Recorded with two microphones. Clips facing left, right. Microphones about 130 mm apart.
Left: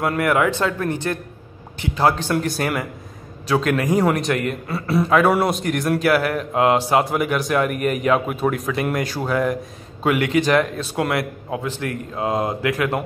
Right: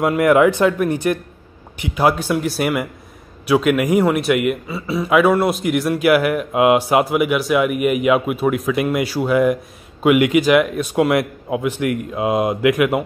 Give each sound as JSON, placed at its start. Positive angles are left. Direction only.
{"t": 0.0, "sound": "a man's voice", "side_deg": -20}